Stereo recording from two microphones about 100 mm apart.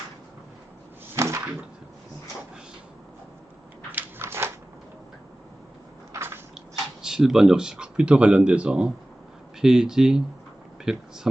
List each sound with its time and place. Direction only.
1.1 s a sound: 25° right (ahead or behind)
3.9 s dog: 25° right (ahead or behind)
6.1 s biting: 25° right (ahead or behind)
7.0 s speech: 5° right (ahead or behind)